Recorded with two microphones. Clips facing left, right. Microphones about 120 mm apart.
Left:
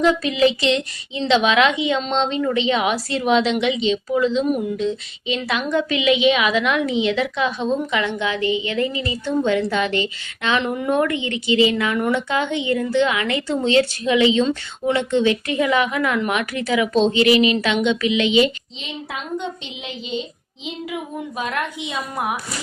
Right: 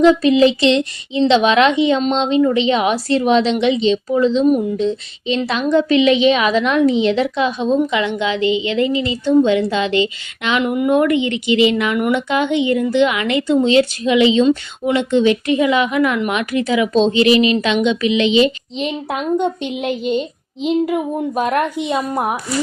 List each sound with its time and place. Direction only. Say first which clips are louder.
0.0 s a woman's voice: right 6 dB; 30° right (ahead or behind)
1.9 s a woman's voice: right 5 dB; 15° right (ahead or behind)
18.8 s speech: right 10 dB; 55° right (ahead or behind); by 22.4 s 40° right (ahead or behind)